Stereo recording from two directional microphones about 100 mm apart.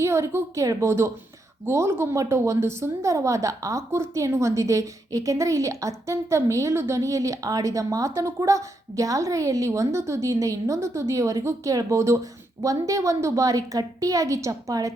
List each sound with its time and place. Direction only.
0.0 s a woman's voice: 30° right (ahead or behind)